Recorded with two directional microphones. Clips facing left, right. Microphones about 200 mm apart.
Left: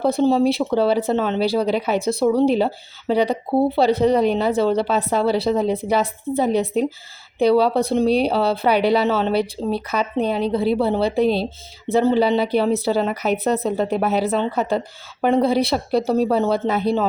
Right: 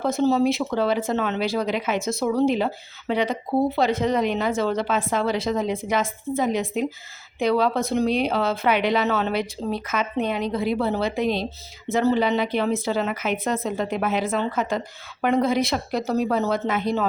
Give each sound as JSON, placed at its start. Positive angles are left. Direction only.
{"t": 0.0, "sound": "speech", "side_deg": 30}